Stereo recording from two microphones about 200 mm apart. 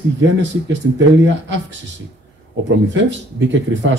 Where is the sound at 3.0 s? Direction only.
65° right (ahead or behind).